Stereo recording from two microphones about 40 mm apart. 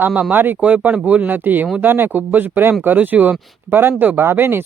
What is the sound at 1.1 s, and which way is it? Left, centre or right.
Speech, right.